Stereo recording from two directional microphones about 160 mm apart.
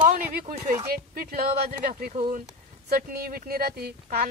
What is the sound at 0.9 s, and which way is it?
Speech, 70° right (ahead or behind).